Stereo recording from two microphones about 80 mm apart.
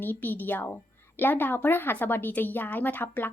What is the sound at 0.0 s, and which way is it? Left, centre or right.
A woman's voice, left.